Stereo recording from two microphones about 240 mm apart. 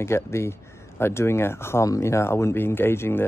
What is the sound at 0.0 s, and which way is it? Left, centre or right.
Speech, centre.